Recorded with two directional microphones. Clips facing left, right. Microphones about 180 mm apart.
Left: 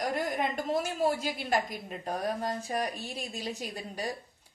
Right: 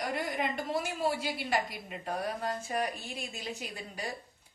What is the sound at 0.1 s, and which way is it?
Speech, 45° left (ahead or behind).